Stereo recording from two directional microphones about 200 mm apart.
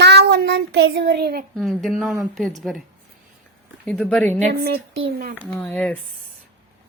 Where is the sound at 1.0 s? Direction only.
55° right (ahead or behind).